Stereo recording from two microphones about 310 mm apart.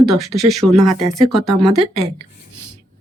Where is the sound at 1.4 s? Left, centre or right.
Right.